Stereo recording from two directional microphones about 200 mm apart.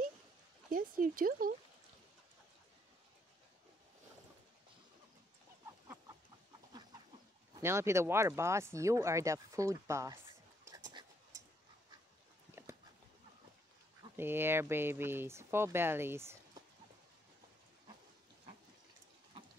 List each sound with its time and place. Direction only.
0.7 s speech: 45° right (ahead or behind)
5.7 s chicken: 15° right (ahead or behind)
7.6 s speech: 15° right (ahead or behind)
10.6 s a sound: 20° right (ahead or behind)
14.1 s speech: 10° right (ahead or behind)